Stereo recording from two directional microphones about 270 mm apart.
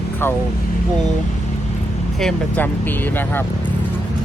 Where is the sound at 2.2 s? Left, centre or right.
Centre.